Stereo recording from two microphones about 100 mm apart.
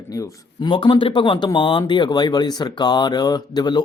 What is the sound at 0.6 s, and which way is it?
Speech, 50° left (ahead or behind).